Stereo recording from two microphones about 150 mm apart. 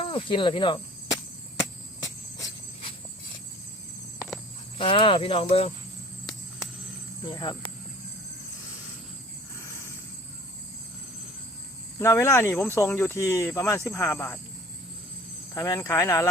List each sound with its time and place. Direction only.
0.0 s cricket: 35° left (ahead or behind)
4.8 s speech: 35° left (ahead or behind)
7.3 s speech: 30° left (ahead or behind)
11.9 s speech: 15° left (ahead or behind)
15.5 s speech: 20° left (ahead or behind)